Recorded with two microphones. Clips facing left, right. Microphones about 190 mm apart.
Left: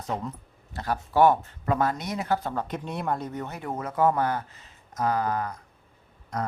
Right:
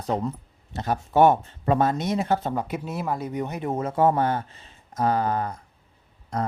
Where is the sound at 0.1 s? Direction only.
30° right (ahead or behind).